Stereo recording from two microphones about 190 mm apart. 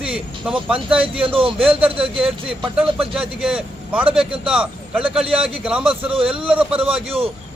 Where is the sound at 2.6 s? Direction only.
Centre (ahead or behind).